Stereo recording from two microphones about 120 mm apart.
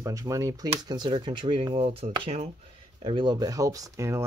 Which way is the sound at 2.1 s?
55° right (ahead or behind).